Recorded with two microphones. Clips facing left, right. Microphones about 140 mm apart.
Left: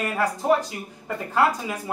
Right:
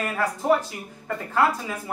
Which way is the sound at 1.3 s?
20° left (ahead or behind).